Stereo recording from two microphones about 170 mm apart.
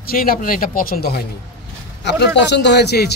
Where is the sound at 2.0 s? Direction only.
90° left; by 3.1 s 75° left (ahead or behind).